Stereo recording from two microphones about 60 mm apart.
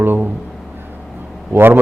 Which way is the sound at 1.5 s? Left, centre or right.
Right.